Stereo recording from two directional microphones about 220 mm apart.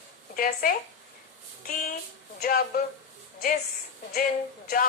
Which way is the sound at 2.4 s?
45° left (ahead or behind).